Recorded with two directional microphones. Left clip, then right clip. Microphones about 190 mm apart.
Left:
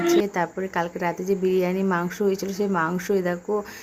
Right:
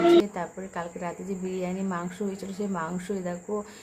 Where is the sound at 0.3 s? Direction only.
30° left (ahead or behind).